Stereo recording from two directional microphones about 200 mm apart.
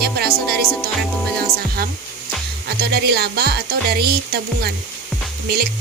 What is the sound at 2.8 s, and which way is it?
Music, 55° right (ahead or behind).